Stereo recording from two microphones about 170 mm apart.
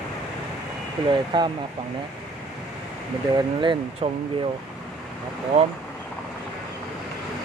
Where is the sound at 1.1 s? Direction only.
25° right (ahead or behind).